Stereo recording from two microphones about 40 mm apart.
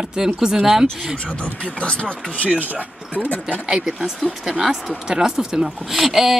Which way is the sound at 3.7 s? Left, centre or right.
Centre.